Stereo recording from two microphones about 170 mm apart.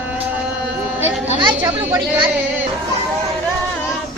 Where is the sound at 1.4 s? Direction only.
25° right (ahead or behind).